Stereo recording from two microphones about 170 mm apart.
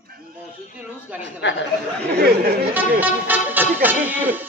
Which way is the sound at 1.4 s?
90° left.